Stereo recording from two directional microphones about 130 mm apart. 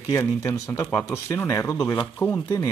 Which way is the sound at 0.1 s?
20° left (ahead or behind).